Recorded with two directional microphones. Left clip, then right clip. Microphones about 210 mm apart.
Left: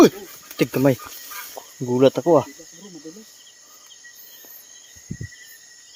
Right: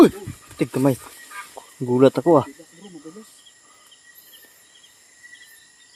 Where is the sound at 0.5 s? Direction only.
20° left (ahead or behind).